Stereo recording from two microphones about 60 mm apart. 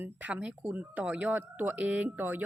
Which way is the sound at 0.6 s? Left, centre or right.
Right.